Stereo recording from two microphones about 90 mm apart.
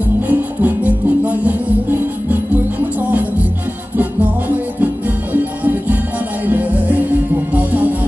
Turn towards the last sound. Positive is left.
turn(degrees=-15)  # may be behind; listen again after turning